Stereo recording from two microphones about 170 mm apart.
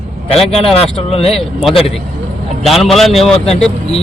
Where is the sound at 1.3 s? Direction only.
Centre (ahead or behind).